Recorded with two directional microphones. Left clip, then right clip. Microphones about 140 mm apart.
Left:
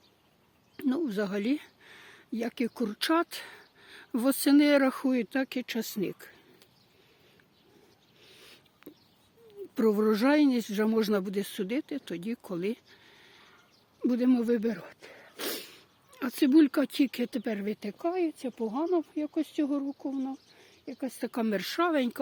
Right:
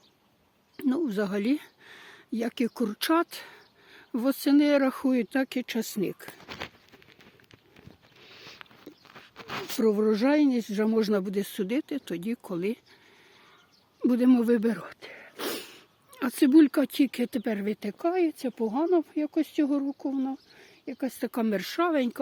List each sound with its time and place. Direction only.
0.8 s speech: 20° right (ahead or behind)
3.4 s speech: centre (ahead or behind)
4.9 s speech: 20° right (ahead or behind)
9.7 s speech: 5° left (ahead or behind); by 12.8 s 15° right (ahead or behind)
14.0 s speech: 35° right (ahead or behind)
15.0 s a sound: 25° right (ahead or behind)
15.4 s dog: 40° right (ahead or behind)
16.2 s speech: 25° right (ahead or behind)
21.2 s speech: 20° right (ahead or behind)